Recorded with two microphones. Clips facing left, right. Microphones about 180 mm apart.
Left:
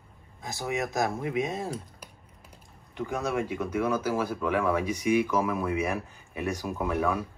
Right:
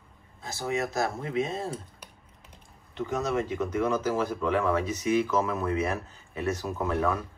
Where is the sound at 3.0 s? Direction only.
10° left (ahead or behind).